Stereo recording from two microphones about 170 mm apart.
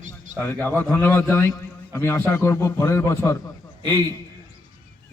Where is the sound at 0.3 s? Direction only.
10° left (ahead or behind).